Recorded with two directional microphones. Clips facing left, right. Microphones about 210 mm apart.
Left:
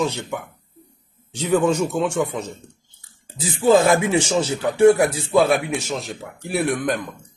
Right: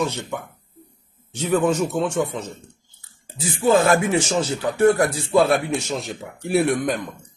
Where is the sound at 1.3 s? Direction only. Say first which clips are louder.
Left 1 dB; 15° left (ahead or behind).